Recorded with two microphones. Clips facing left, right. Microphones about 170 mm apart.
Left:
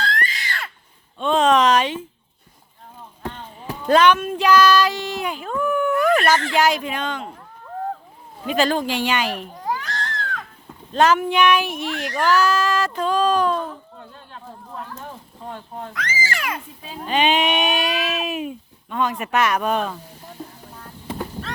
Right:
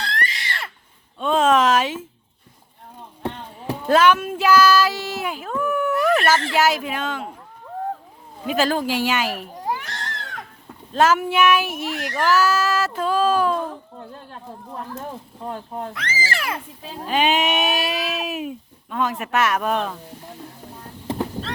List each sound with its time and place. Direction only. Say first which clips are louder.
0.3 s a sound: even; 25° right (ahead or behind)
1.2 s a sound: left 1 dB; 5° right (ahead or behind)
3.8 s female singing: left 1 dB; 5° right (ahead or behind)
6.6 s speech: even; 5° right (ahead or behind)
8.4 s speech: left 1 dB; 5° right (ahead or behind)
9.6 s a sound: left 1 dB; 20° right (ahead or behind)
10.9 s speech: left 1 dB; 5° right (ahead or behind)
15.4 s speech: right 3 dB; 40° right (ahead or behind)
15.9 s a child's voice: left 4 dB; 25° right (ahead or behind)
16.8 s speech: left 1 dB; 5° right (ahead or behind)